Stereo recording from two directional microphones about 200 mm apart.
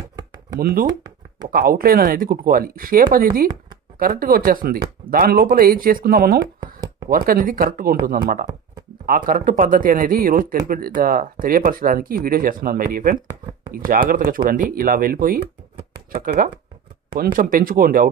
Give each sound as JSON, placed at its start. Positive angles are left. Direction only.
{"t": 0.6, "sound": "speech", "side_deg": -50}